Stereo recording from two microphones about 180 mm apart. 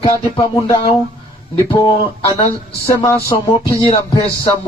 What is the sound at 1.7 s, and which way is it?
Speech, 20° left (ahead or behind).